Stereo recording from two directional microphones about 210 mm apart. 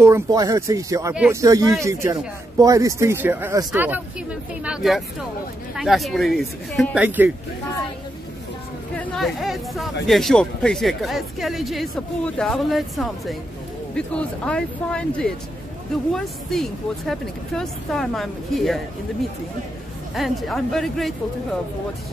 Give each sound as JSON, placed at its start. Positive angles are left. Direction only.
{"t": 0.0, "sound": "speech", "side_deg": -15}
{"t": 1.1, "sound": "speech", "side_deg": -5}
{"t": 1.4, "sound": "speech", "side_deg": -15}
{"t": 8.9, "sound": "speech", "side_deg": 5}
{"t": 16.5, "sound": "speech", "side_deg": 0}
{"t": 20.2, "sound": "speech", "side_deg": 0}